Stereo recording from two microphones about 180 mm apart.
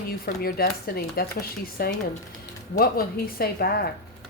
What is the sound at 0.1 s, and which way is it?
Speech, 55° left (ahead or behind).